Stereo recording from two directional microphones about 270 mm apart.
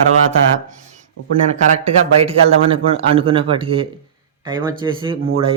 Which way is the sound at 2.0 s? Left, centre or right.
Right.